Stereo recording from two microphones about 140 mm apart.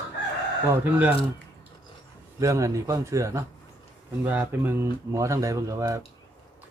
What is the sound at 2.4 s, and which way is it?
Speech, 20° right (ahead or behind).